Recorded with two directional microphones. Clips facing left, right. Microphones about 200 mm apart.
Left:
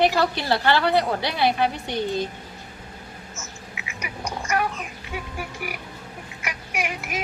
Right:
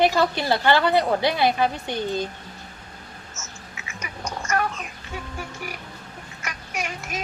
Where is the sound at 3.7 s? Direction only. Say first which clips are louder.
Left 2 dB; 15° left (ahead or behind).